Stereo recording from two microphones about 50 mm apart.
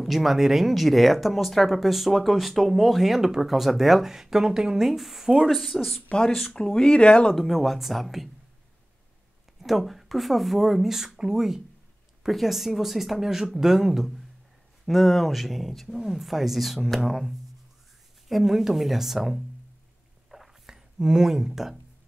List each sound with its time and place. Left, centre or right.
0.0 s speech: centre
6.1 s speech: centre
7.3 s speech: centre
9.6 s speech: centre
20.2 s a sound: centre